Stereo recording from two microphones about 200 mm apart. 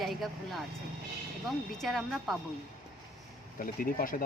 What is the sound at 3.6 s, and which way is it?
Speech, 45° left (ahead or behind).